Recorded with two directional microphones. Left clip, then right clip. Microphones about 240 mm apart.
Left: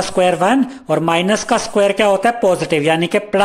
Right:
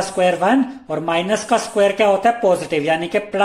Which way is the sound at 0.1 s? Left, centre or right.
Left.